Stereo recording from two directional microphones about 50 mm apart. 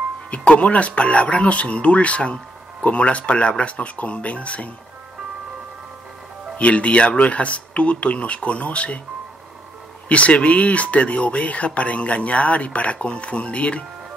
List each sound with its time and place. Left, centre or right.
0.3 s speech: left
6.6 s speech: left
10.0 s speech: left